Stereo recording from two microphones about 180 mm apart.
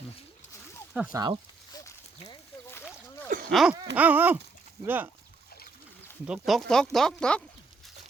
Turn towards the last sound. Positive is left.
turn(degrees=5)  # may be behind; listen again after turning